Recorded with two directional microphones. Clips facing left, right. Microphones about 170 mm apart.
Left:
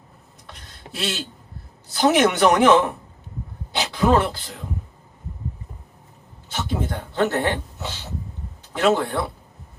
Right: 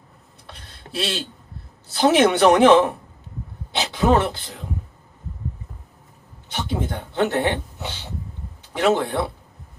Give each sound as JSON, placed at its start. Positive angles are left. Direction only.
{"t": 0.9, "sound": "speech", "side_deg": -30}
{"t": 6.5, "sound": "speech", "side_deg": -20}